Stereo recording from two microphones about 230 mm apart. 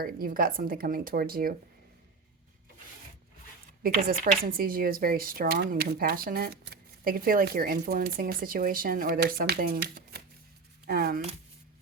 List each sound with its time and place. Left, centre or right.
0.0 s speech: right
3.8 s speech: right